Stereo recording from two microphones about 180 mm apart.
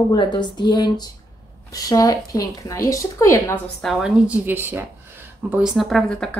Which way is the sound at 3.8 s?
5° right (ahead or behind).